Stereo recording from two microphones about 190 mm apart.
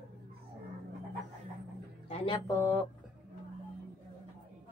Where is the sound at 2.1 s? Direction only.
25° left (ahead or behind).